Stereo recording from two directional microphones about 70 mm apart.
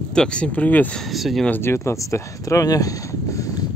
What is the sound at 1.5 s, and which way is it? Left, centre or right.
Speech, left.